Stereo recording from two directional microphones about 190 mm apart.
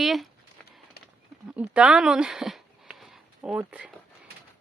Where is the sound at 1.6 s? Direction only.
5° right (ahead or behind).